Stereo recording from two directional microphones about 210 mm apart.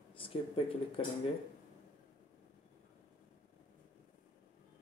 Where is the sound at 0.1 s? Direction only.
25° left (ahead or behind).